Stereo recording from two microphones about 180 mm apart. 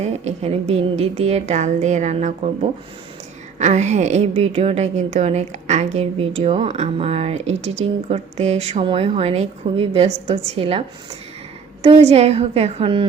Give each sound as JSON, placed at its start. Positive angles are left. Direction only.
{"t": 0.0, "sound": "a woman's voice", "side_deg": -40}